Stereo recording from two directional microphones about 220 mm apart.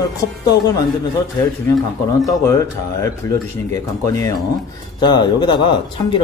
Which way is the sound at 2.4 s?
15° left (ahead or behind).